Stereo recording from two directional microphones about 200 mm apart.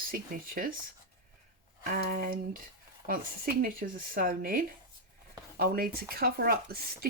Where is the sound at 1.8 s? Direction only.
45° right (ahead or behind).